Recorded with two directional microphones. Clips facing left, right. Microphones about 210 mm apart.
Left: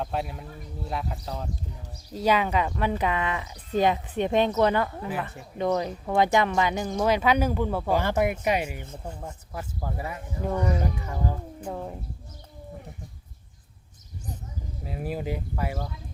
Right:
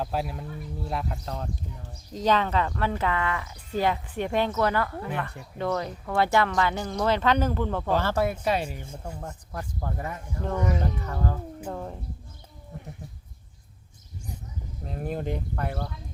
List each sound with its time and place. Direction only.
0.0 s speech: centre (ahead or behind)
14.8 s speech: 5° left (ahead or behind)